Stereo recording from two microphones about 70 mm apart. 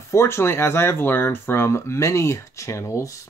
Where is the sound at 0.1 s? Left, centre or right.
Left.